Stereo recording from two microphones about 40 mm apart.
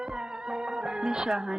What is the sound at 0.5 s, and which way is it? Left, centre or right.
Music, centre.